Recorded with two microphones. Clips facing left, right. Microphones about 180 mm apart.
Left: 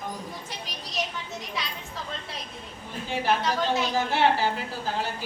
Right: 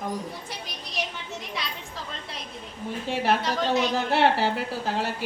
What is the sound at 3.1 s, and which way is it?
Speech, 65° right (ahead or behind).